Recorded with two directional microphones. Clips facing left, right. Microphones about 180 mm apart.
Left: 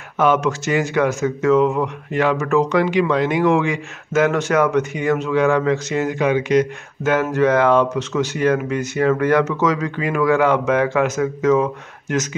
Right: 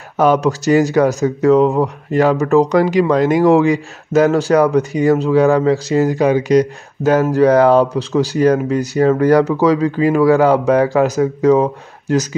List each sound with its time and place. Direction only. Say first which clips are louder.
0.2 s speech: right 4 dB; 35° right (ahead or behind)